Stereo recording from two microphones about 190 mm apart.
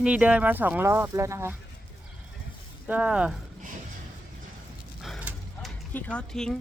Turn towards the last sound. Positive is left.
turn(degrees=5)  # may be behind; listen again after turning